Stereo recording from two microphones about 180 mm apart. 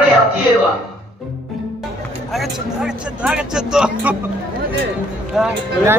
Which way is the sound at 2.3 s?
Centre (ahead or behind).